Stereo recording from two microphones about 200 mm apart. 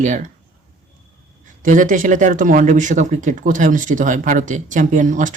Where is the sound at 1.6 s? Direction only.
40° right (ahead or behind).